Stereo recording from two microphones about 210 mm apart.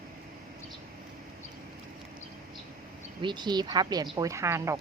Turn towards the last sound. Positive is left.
turn(degrees=-15)  # may be behind; listen again after turning